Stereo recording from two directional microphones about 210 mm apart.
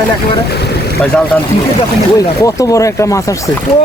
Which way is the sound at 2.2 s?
15° left (ahead or behind).